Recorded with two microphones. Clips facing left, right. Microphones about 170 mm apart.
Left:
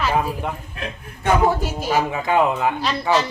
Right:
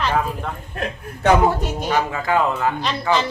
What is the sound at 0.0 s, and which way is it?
Speech, 10° left (ahead or behind).